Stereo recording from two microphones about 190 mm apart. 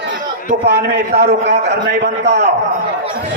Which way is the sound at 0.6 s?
60° right (ahead or behind).